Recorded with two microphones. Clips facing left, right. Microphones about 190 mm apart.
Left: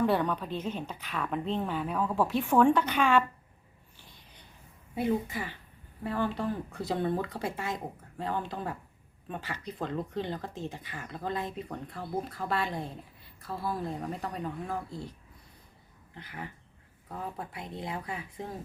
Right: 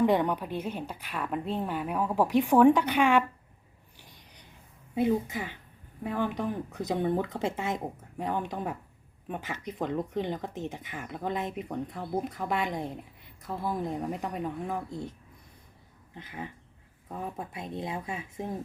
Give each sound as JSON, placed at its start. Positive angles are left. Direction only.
{"t": 0.0, "sound": "speech", "side_deg": -20}
{"t": 3.9, "sound": "writing", "side_deg": -15}
{"t": 4.9, "sound": "speech", "side_deg": -20}
{"t": 16.1, "sound": "speech", "side_deg": -20}